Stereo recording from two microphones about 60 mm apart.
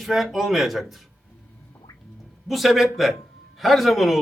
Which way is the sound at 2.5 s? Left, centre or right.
Centre.